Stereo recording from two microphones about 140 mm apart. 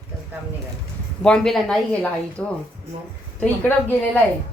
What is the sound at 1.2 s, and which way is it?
Speech, 5° left (ahead or behind).